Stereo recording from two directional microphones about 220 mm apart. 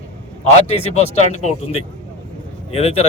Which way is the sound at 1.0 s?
30° left (ahead or behind).